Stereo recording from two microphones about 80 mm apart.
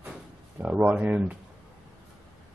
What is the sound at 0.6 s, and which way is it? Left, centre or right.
Speech, centre.